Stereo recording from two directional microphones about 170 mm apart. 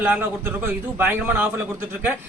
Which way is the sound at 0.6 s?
10° right (ahead or behind).